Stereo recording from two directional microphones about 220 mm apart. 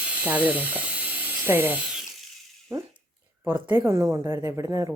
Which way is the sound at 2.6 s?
15° right (ahead or behind).